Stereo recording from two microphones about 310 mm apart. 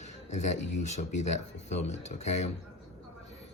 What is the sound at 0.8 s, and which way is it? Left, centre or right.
Speech, left.